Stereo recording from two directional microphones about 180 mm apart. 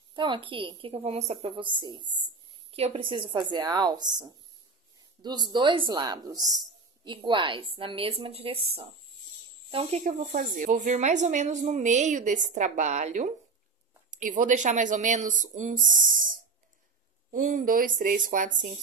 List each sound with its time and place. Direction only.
0.1 s a woman's voice: 25° right (ahead or behind)
10.0 s a woman's voice: 45° right (ahead or behind)